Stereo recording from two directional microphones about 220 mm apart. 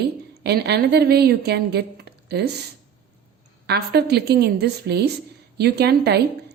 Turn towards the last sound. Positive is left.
turn(degrees=-50)  # may be behind; listen again after turning